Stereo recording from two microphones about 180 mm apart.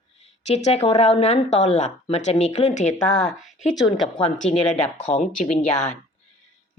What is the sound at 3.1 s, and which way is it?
Speech, centre (ahead or behind).